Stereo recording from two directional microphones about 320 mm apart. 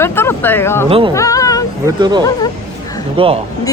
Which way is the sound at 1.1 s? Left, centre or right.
Centre.